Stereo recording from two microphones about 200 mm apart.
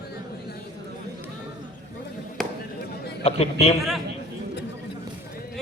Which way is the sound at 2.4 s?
Centre (ahead or behind).